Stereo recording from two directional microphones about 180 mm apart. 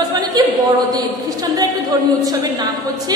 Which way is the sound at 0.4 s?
25° right (ahead or behind).